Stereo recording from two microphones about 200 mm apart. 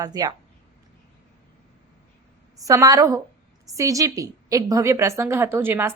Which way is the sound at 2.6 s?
15° right (ahead or behind).